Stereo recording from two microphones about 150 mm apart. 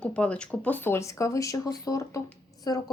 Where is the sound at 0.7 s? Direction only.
15° left (ahead or behind).